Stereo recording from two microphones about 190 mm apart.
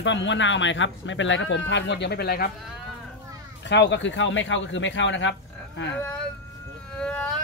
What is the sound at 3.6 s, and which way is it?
Speech, 65° left (ahead or behind).